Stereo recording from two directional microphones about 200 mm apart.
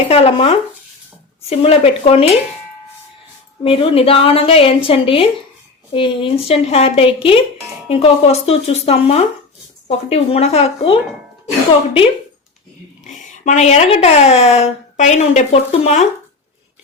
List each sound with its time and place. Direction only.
0.1 s a woman's voice: 30° left (ahead or behind)
3.6 s a woman's voice: 25° left (ahead or behind)
13.1 s speech: 35° left (ahead or behind)